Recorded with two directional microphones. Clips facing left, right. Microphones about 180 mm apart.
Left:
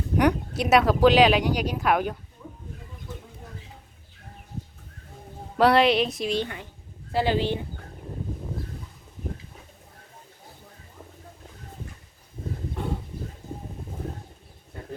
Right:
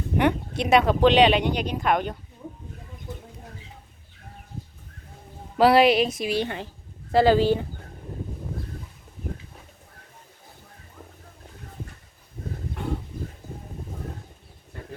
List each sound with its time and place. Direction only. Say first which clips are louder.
0.2 s speech: even; centre (ahead or behind)
5.5 s speech: right 2 dB; 5° right (ahead or behind)
7.1 s speech: right 6 dB; 40° right (ahead or behind)